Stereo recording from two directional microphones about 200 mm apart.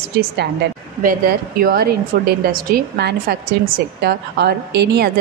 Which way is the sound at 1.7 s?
45° right (ahead or behind).